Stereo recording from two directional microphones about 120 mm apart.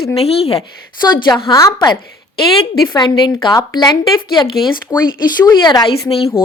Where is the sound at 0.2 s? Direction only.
55° left (ahead or behind).